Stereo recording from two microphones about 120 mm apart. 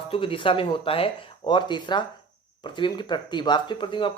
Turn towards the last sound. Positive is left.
turn(degrees=45)  # may be behind; listen again after turning